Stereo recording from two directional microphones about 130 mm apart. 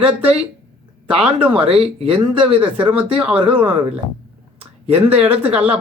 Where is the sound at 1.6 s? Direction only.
50° right (ahead or behind).